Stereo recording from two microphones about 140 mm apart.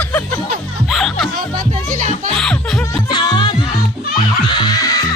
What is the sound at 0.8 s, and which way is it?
Music, centre (ahead or behind).